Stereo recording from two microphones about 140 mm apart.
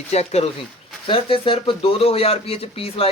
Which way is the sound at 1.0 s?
40° left (ahead or behind).